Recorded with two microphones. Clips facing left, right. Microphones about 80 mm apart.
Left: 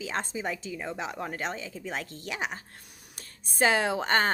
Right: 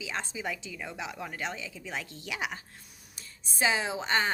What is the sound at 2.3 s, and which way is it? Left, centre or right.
Speech, left.